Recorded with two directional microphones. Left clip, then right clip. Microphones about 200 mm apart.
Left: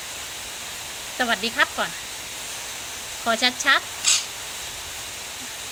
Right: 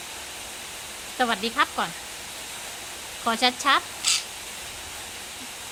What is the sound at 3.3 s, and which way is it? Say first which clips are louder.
Speech: left 2 dB; 20° right (ahead or behind).